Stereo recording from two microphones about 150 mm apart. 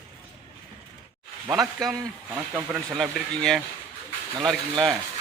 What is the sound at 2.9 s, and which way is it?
Speech, centre (ahead or behind).